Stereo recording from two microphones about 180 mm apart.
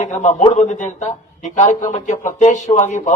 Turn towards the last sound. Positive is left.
turn(degrees=40)  # may be behind; listen again after turning